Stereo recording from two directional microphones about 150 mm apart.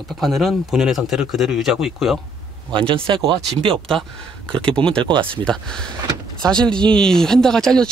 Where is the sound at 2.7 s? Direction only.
35° right (ahead or behind).